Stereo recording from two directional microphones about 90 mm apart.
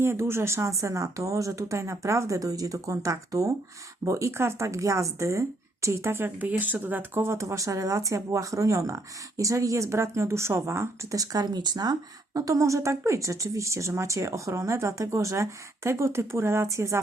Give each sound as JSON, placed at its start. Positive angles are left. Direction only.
{"t": 0.0, "sound": "speech", "side_deg": -30}